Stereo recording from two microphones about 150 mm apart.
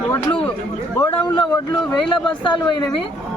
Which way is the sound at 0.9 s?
20° left (ahead or behind).